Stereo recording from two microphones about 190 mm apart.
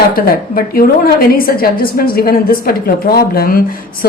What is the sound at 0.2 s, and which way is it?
A woman's voice, 50° left (ahead or behind).